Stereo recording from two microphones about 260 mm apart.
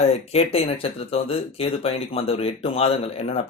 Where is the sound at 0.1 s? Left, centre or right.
Left.